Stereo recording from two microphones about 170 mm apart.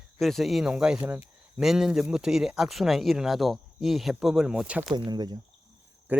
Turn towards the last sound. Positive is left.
turn(degrees=-10)  # may be behind; listen again after turning